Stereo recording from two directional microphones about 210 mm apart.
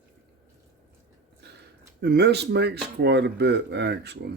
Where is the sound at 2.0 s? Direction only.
50° right (ahead or behind).